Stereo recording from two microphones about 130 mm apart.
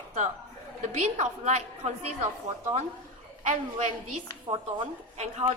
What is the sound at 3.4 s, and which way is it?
Speech, 65° right (ahead or behind).